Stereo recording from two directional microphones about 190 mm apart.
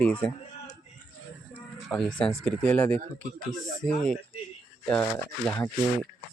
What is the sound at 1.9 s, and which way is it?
Speech, 5° left (ahead or behind).